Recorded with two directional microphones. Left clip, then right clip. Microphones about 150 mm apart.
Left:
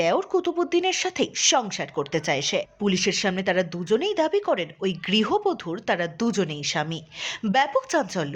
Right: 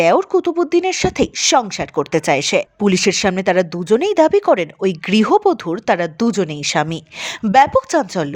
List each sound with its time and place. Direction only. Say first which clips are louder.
0.0 s a woman's voice: right 9 dB; 55° right (ahead or behind)
0.3 s speech: right 7 dB; 40° right (ahead or behind)
6.6 s a woman's voice: right 9 dB; 55° right (ahead or behind)